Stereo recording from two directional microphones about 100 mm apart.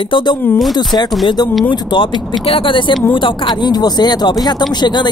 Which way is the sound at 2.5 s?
60° left (ahead or behind).